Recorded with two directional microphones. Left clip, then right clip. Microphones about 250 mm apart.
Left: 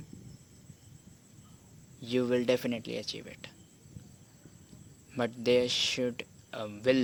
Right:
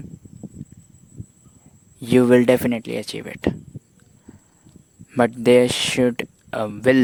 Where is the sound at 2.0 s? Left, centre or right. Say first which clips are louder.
Right 15 dB; right.